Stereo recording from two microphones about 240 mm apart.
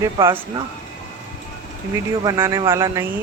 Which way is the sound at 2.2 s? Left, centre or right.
Centre.